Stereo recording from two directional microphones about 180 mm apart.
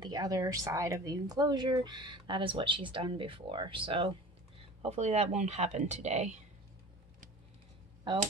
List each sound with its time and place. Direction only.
0.0 s speech: 20° right (ahead or behind); by 6.4 s 40° right (ahead or behind)